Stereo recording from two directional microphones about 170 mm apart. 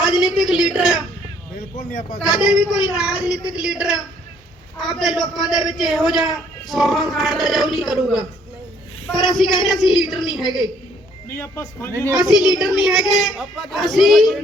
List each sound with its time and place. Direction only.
0.0 s a man's voice: 5° right (ahead or behind)
1.7 s speech: 50° left (ahead or behind)
2.1 s a man's voice: 5° right (ahead or behind)
11.3 s speech: 15° left (ahead or behind)
12.2 s a man's voice: 5° right (ahead or behind)